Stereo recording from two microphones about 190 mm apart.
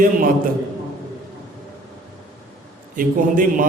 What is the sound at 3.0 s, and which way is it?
Speech, 45° right (ahead or behind).